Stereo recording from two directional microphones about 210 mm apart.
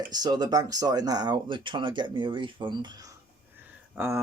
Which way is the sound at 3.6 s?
10° right (ahead or behind).